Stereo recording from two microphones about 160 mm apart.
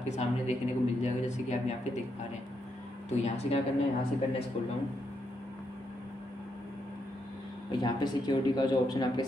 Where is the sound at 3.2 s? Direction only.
40° left (ahead or behind).